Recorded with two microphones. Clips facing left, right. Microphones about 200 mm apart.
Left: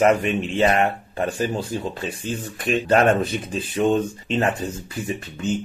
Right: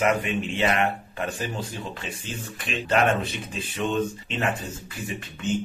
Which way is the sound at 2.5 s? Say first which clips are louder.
Left 6 dB; 45° left (ahead or behind).